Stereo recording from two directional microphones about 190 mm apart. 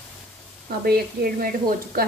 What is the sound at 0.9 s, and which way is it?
Speech, 50° right (ahead or behind).